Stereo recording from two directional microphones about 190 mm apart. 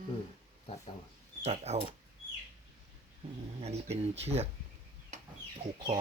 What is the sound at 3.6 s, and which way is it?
Speech, 35° right (ahead or behind).